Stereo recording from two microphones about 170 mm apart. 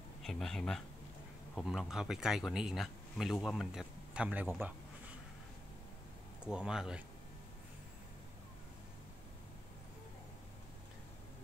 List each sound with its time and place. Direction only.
0.2 s speech: centre (ahead or behind)
6.4 s speech: 5° right (ahead or behind)